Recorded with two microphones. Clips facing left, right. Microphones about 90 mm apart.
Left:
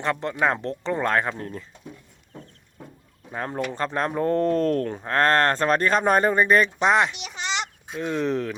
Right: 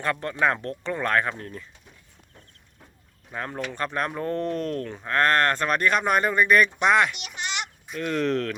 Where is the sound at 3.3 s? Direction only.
30° left (ahead or behind).